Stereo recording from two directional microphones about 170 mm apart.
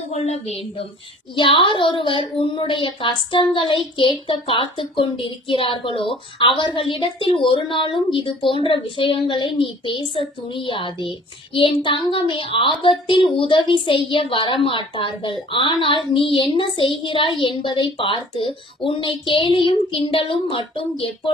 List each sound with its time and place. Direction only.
0.1 s a woman's voice: 40° left (ahead or behind)